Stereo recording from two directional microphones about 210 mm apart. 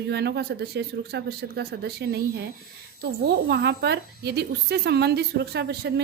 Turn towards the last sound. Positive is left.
turn(degrees=-50)  # may be behind; listen again after turning